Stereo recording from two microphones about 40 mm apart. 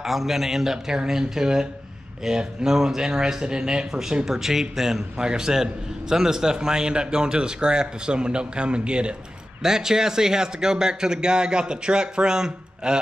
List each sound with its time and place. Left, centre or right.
0.0 s a man's voice: centre
5.1 s a man's voice: centre
9.6 s a man's voice: centre